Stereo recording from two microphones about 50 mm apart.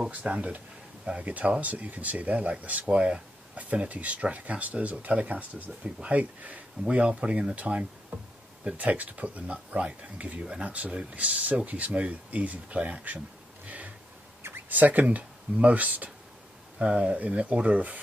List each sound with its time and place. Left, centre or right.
0.3 s speech: right
11.2 s speech: right
13.7 s a sound: right
14.7 s speech: right
16.7 s speech: centre